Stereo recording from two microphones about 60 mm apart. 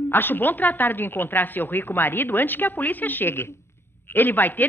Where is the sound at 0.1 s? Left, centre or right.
Left.